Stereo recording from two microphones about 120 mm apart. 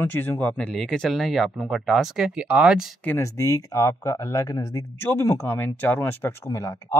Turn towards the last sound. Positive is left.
turn(degrees=25)  # may be behind; listen again after turning